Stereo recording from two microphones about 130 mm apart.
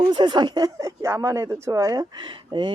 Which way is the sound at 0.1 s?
35° right (ahead or behind).